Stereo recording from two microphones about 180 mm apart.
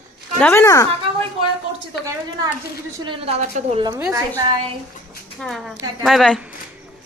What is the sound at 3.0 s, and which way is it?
Speech, 30° right (ahead or behind).